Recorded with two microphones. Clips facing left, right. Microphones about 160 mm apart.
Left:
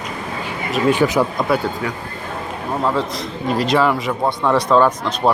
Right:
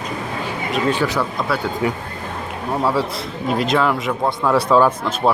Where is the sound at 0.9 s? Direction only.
15° left (ahead or behind).